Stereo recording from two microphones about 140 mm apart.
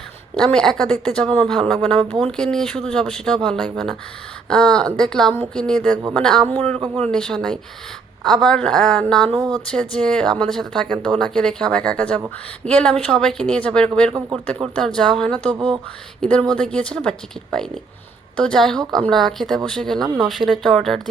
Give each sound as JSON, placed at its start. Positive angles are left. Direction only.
{"t": 0.3, "sound": "speech", "side_deg": 5}
{"t": 6.7, "sound": "speech", "side_deg": -40}
{"t": 7.0, "sound": "speech", "side_deg": 5}
{"t": 16.6, "sound": "speech", "side_deg": 5}